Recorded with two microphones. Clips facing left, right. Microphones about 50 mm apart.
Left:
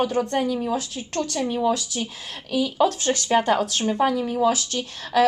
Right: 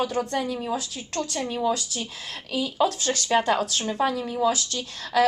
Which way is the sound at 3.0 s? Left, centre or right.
Left.